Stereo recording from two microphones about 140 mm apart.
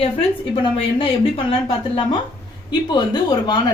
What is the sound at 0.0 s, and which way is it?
Speech, 40° left (ahead or behind).